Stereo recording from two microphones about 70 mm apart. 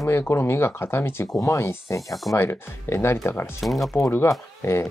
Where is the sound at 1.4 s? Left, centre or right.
Left.